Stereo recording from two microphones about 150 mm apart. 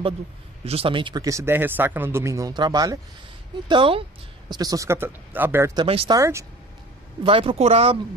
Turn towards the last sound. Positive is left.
turn(degrees=-40)  # may be behind; listen again after turning